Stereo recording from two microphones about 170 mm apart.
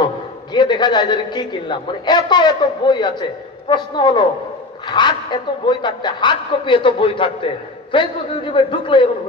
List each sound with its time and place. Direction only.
0.0 s a man's voice: 25° left (ahead or behind)